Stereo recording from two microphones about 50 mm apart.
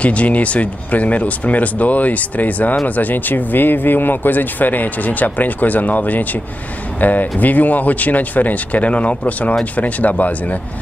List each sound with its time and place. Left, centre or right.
0.0 s speech: left